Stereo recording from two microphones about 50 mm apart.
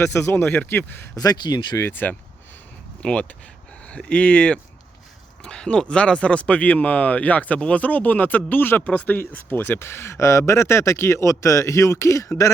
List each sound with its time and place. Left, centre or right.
0.0 s speech: left
0.6 s a man's voice: left
3.0 s speech: left
8.8 s speech: left
9.7 s speech: left